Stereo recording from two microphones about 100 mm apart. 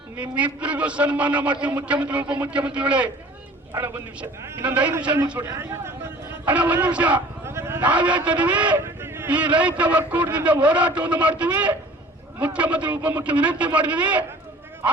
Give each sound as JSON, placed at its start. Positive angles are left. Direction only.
{"t": 0.2, "sound": "a man's voice", "side_deg": -15}
{"t": 3.7, "sound": "a man's voice", "side_deg": -25}
{"t": 6.4, "sound": "a man's voice", "side_deg": -15}
{"t": 7.4, "sound": "a man's voice", "side_deg": -25}